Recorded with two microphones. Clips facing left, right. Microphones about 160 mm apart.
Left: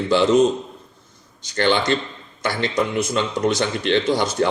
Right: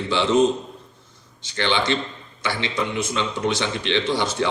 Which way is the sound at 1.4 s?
45° left (ahead or behind).